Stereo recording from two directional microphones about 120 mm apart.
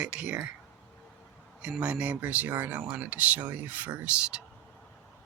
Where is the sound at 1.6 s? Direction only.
10° right (ahead or behind).